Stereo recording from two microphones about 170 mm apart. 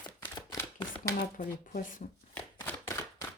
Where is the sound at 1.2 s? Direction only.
55° left (ahead or behind).